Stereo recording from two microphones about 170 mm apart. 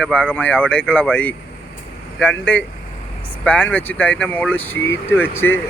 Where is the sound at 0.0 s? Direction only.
5° left (ahead or behind).